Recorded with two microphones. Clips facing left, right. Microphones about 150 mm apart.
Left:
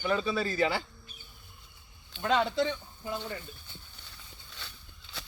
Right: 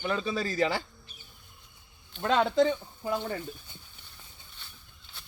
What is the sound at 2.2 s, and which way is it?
Speech, 45° right (ahead or behind).